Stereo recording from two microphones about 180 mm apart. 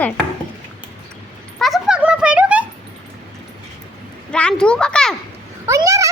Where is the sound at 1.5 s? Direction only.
Centre (ahead or behind).